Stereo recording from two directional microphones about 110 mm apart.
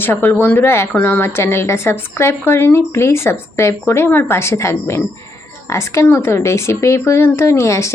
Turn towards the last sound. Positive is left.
turn(degrees=25)  # may be behind; listen again after turning